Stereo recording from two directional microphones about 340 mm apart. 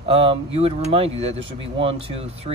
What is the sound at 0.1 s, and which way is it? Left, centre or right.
Speech, centre.